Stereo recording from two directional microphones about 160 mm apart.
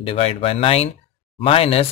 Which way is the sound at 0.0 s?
35° left (ahead or behind).